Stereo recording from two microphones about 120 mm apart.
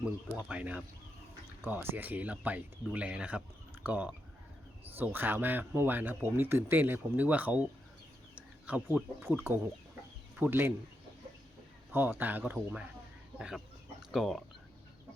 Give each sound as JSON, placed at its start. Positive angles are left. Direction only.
{"t": 0.0, "sound": "speech", "side_deg": -10}
{"t": 8.4, "sound": "bird", "side_deg": -10}
{"t": 9.2, "sound": "speech", "side_deg": -20}
{"t": 11.9, "sound": "speech", "side_deg": -15}
{"t": 14.1, "sound": "speech", "side_deg": 0}